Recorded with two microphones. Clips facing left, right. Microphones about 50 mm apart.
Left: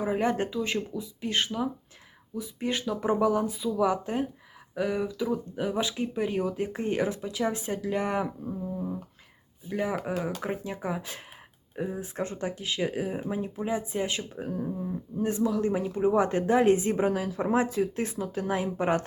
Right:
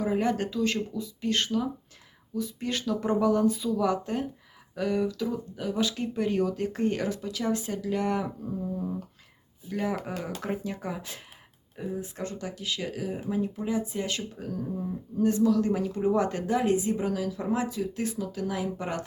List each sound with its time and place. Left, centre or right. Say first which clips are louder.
0.0 s speech: even; centre
8.4 s humming: right 1 dB; centre
9.6 s speech: left 1 dB; centre
11.8 s speech: left 2 dB; left
14.7 s speech: even; centre
15.2 s speech: right 3 dB; left